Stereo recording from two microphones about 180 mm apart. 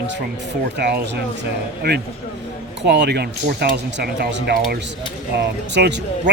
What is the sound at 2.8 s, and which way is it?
Speech, 70° right (ahead or behind).